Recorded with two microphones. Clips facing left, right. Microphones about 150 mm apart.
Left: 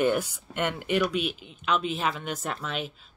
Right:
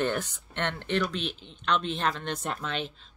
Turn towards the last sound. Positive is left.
turn(degrees=5)  # may be behind; listen again after turning